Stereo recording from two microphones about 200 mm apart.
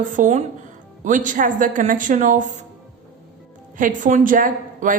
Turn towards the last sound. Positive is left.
turn(degrees=-45)  # may be behind; listen again after turning